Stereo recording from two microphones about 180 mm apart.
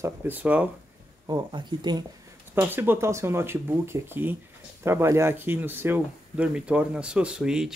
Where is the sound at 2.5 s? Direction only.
10° right (ahead or behind).